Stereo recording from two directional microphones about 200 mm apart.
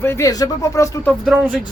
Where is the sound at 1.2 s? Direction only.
Centre (ahead or behind).